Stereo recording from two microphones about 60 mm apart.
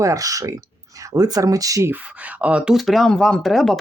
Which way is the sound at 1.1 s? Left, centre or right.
Right.